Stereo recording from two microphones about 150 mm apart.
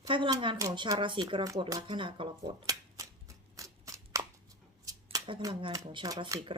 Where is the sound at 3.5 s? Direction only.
20° right (ahead or behind).